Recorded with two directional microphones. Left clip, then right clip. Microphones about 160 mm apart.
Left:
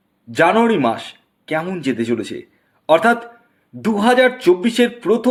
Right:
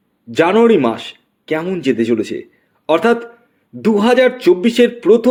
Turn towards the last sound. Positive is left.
turn(degrees=-35)  # may be behind; listen again after turning